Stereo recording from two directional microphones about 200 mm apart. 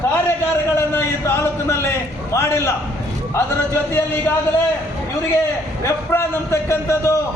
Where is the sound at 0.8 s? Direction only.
15° left (ahead or behind).